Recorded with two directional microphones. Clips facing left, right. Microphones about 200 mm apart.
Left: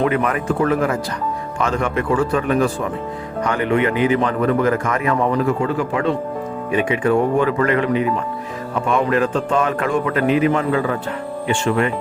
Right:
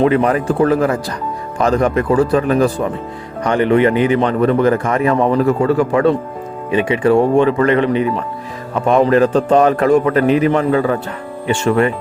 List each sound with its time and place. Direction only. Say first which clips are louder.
0.0 s a man's voice: right 5 dB; 30° right (ahead or behind)
6.7 s a man's voice: right 4 dB; 25° right (ahead or behind)